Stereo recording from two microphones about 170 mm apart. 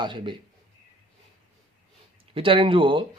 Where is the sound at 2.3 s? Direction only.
30° right (ahead or behind).